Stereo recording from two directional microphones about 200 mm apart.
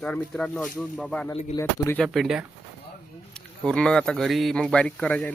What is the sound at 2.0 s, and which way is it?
Speech, centre (ahead or behind).